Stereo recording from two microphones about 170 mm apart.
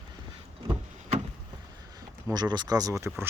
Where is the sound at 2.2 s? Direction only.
25° right (ahead or behind).